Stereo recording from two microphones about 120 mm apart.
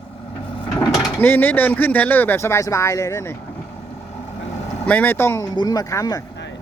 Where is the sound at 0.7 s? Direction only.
35° left (ahead or behind).